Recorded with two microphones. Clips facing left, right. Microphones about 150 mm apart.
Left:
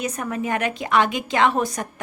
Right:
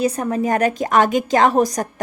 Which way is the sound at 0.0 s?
35° right (ahead or behind).